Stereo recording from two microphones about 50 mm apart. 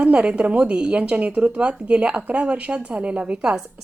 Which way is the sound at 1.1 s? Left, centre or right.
Right.